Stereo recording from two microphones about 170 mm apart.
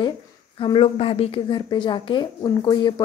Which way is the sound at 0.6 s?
30° left (ahead or behind).